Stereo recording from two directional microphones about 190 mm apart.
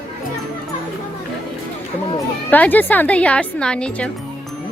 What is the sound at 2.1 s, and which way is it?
Speech, 10° left (ahead or behind).